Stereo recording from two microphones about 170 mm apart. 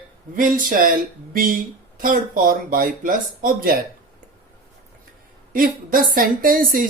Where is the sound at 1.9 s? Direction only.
55° right (ahead or behind).